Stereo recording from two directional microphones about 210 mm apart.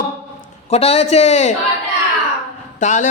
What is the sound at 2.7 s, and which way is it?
Speech, 35° left (ahead or behind).